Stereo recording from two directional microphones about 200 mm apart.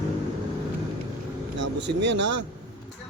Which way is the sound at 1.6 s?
60° right (ahead or behind).